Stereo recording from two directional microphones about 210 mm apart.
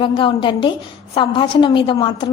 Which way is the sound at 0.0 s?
25° left (ahead or behind).